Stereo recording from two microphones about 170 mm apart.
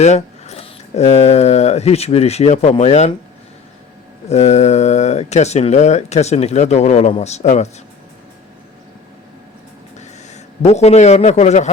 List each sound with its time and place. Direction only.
0.0 s speech: 40° left (ahead or behind)
4.3 s speech: 40° left (ahead or behind)
10.0 s a man's voice: 40° left (ahead or behind)